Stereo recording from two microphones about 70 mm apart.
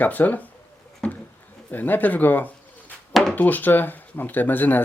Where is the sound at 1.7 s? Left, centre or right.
Left.